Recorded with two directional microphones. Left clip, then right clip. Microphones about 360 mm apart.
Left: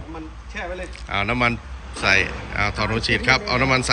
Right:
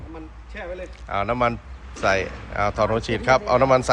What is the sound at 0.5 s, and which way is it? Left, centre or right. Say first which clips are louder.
Speech: left 3 dB; centre.